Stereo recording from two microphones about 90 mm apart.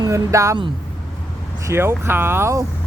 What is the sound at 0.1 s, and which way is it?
Speech, 35° right (ahead or behind).